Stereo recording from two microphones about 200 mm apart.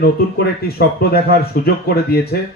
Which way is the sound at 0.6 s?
50° left (ahead or behind).